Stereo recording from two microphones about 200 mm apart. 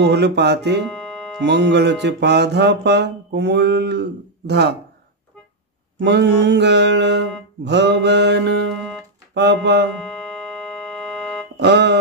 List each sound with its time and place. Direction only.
0.0 s speech: 55° right (ahead or behind)
5.9 s speech: 60° right (ahead or behind)
10.9 s organ: 5° left (ahead or behind)
11.5 s music: 60° right (ahead or behind)